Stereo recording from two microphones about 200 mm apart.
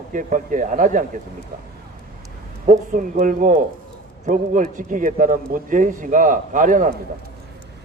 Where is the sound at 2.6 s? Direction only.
40° right (ahead or behind).